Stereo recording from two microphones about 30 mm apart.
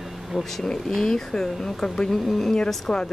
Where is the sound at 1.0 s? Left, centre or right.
Centre.